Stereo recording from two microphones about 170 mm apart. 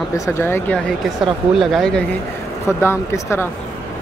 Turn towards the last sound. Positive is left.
turn(degrees=15)  # may be behind; listen again after turning